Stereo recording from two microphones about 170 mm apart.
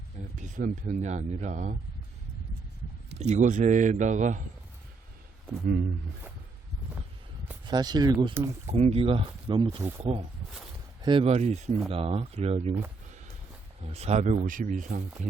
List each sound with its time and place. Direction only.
0.3 s speech: 45° right (ahead or behind)
3.2 s speech: 45° right (ahead or behind)
7.6 s speech: 25° right (ahead or behind)
8.7 s speech: 35° right (ahead or behind)
13.8 s speech: 40° right (ahead or behind)